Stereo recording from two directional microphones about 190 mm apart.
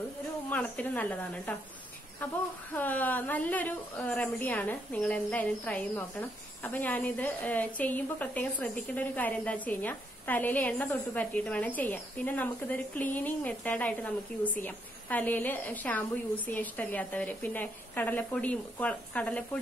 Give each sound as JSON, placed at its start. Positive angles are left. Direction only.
{"t": 0.5, "sound": "a woman's voice", "side_deg": 10}
{"t": 2.7, "sound": "a woman's voice", "side_deg": 10}